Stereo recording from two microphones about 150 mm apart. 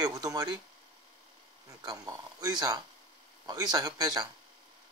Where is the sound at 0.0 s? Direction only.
25° right (ahead or behind).